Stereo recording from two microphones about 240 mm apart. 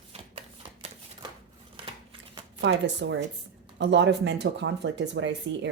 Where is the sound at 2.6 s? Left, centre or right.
Right.